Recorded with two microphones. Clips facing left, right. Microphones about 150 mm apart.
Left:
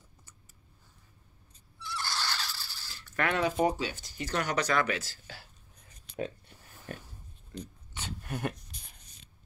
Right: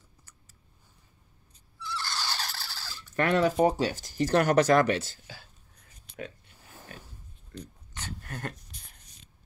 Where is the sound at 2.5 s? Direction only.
85° right.